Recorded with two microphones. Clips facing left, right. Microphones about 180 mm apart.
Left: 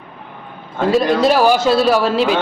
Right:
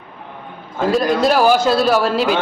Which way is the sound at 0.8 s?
Centre (ahead or behind).